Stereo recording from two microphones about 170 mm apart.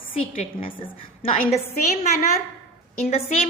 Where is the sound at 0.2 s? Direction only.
30° left (ahead or behind).